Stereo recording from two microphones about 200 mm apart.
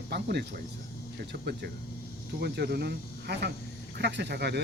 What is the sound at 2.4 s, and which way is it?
Speech, 55° right (ahead or behind).